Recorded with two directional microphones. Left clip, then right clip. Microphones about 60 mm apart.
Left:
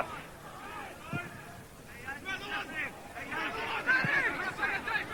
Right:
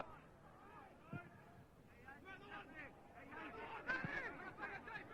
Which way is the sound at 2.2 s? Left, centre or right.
Left.